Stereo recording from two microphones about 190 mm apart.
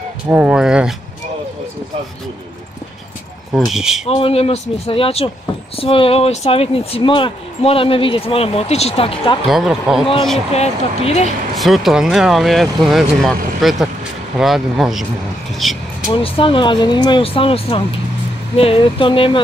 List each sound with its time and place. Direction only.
0.3 s speech: 5° right (ahead or behind)
3.5 s speech: centre (ahead or behind)
4.0 s speech: 30° left (ahead or behind)
9.5 s speech: centre (ahead or behind)
10.5 s speech: 35° left (ahead or behind)
11.5 s speech: centre (ahead or behind)
16.2 s speech: 30° left (ahead or behind)